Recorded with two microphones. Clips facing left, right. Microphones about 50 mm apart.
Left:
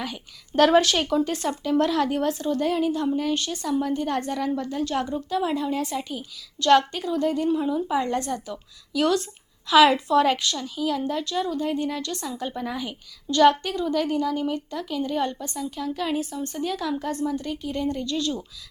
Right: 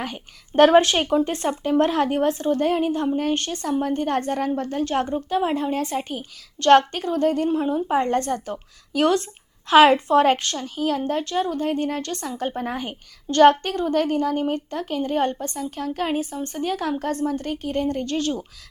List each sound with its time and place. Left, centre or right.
0.0 s a woman's voice: right
7.5 s a woman's voice: right